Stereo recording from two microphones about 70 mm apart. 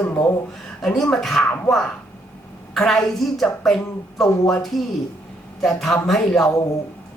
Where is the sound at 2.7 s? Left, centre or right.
Centre.